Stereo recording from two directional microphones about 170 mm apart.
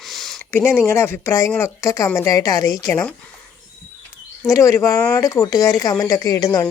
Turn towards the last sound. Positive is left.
turn(degrees=20)  # may be behind; listen again after turning